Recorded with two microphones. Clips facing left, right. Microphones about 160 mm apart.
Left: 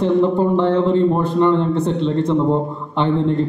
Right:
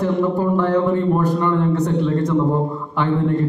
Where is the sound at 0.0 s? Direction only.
25° left (ahead or behind).